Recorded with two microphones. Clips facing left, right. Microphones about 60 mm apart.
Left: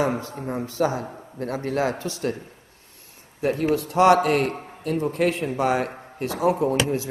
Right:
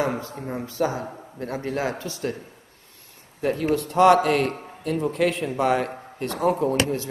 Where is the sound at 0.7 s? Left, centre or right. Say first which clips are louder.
Left 1 dB; left.